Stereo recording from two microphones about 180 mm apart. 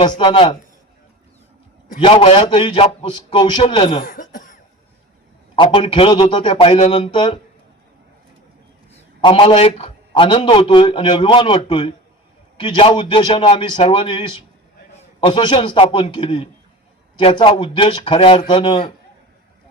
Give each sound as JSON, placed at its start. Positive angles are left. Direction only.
{"t": 0.0, "sound": "a man's voice", "side_deg": 25}
{"t": 2.0, "sound": "a man's voice", "side_deg": 30}
{"t": 4.0, "sound": "cough", "side_deg": 50}
{"t": 5.5, "sound": "a man's voice", "side_deg": 30}
{"t": 9.2, "sound": "a man's voice", "side_deg": 30}